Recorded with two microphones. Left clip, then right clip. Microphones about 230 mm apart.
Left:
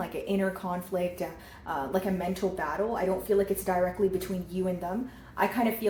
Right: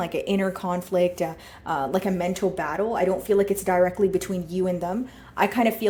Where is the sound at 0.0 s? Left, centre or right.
Right.